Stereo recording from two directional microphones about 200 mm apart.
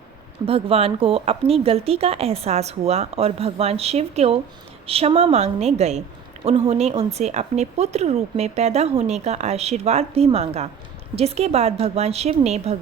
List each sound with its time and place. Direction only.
0.4 s speech: 30° right (ahead or behind)